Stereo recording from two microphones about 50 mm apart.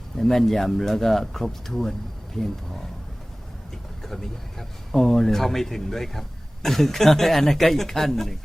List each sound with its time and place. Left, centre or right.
0.2 s speech: centre
4.0 s speech: centre